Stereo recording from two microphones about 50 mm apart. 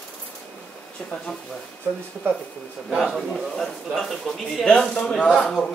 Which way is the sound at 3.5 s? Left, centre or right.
Centre.